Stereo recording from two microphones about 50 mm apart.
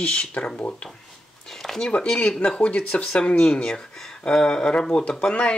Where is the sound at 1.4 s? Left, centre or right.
Centre.